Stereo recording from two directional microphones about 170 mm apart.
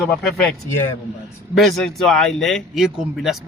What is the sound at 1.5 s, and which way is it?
Speech, centre (ahead or behind).